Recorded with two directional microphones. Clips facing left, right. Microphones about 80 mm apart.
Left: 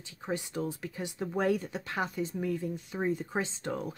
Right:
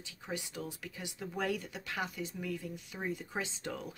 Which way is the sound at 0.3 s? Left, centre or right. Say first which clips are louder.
Left 7 dB; left.